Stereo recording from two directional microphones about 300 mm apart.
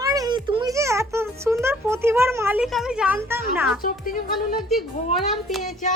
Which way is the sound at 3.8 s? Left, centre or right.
Left.